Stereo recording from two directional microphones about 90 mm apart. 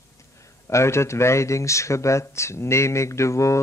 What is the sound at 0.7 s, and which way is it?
Speech, 30° left (ahead or behind).